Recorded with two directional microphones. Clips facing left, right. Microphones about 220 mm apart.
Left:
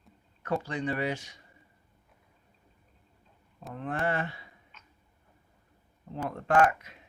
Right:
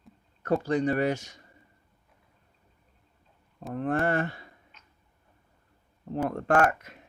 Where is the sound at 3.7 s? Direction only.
45° right (ahead or behind).